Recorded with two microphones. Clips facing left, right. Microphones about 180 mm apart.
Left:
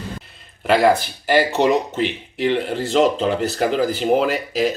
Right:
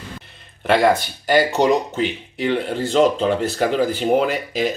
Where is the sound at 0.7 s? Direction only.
5° left (ahead or behind).